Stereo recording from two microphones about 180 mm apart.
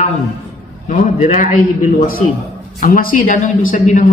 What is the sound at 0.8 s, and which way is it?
A man's voice, 45° left (ahead or behind).